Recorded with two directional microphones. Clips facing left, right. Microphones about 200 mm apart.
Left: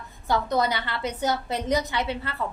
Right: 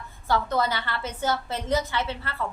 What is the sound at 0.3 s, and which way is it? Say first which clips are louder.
A woman's voice: left 1 dB; 15° left (ahead or behind).